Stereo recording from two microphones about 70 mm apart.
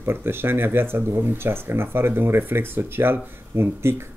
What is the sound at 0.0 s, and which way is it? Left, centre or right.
Speech, right.